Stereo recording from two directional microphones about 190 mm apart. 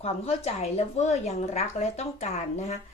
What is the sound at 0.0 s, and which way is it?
Speech, 35° left (ahead or behind).